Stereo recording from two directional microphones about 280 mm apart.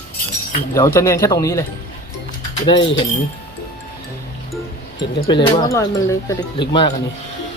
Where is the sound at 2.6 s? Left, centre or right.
Centre.